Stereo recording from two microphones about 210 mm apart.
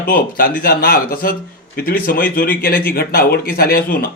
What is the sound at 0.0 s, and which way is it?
Speech, 45° left (ahead or behind).